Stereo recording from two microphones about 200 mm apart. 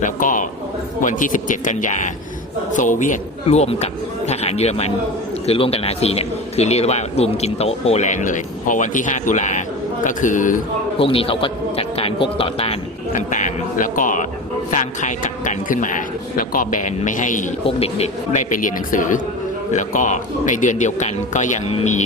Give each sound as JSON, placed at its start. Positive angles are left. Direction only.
{"t": 0.0, "sound": "a man's voice", "side_deg": 40}
{"t": 10.9, "sound": "a man's voice", "side_deg": 25}